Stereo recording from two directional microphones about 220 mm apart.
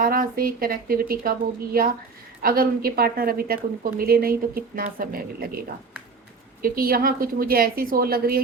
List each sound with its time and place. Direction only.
0.0 s a woman's voice: 40° right (ahead or behind)
2.4 s a woman's voice: 40° right (ahead or behind)
6.6 s a woman's voice: 40° right (ahead or behind)